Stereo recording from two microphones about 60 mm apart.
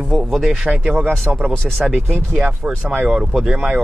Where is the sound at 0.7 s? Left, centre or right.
Right.